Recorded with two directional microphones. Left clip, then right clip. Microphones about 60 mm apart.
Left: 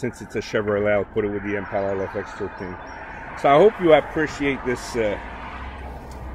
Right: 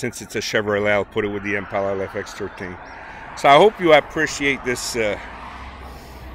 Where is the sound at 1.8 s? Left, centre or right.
Left.